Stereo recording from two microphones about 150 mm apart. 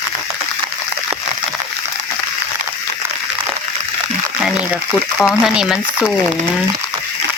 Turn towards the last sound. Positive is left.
turn(degrees=-5)  # may be behind; listen again after turning